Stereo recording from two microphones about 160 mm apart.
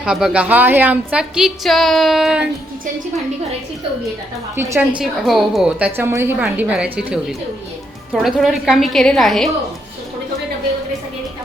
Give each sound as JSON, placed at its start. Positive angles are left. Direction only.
{"t": 0.0, "sound": "a woman's voice", "side_deg": -5}
{"t": 4.5, "sound": "a woman's voice", "side_deg": -10}